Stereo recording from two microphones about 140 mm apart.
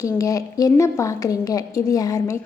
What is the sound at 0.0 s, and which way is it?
A woman's voice, 25° left (ahead or behind).